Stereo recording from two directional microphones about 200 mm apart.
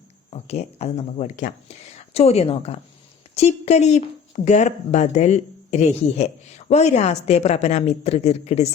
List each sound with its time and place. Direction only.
0.3 s speech: 30° left (ahead or behind)